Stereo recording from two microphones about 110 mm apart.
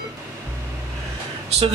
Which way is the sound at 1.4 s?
70° right (ahead or behind).